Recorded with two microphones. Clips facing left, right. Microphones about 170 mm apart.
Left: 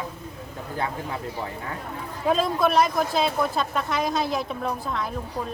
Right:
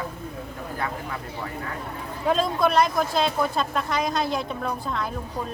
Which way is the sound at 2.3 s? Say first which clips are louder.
Even; centre (ahead or behind).